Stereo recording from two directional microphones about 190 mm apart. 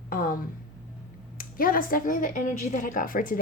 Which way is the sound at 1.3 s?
50° left (ahead or behind).